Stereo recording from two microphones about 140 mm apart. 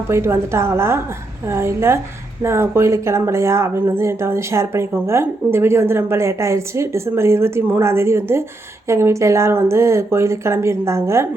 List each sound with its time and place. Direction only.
0.1 s a woman's voice: 20° right (ahead or behind)